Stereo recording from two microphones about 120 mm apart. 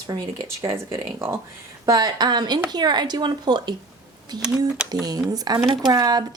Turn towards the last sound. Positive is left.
turn(degrees=-35)  # may be behind; listen again after turning